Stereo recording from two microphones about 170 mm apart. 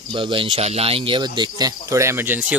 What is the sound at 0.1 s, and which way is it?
Speech, 30° right (ahead or behind).